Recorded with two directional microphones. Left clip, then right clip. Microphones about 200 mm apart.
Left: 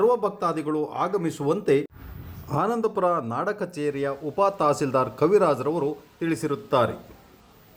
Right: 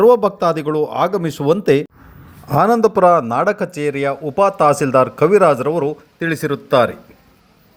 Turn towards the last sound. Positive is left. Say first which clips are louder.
# right 8 dB
turn(degrees=-15)  # may be behind; listen again after turning